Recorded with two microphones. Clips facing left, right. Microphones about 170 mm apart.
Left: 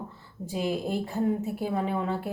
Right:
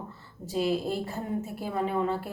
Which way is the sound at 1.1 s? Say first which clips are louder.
Left 5 dB; 15° left (ahead or behind).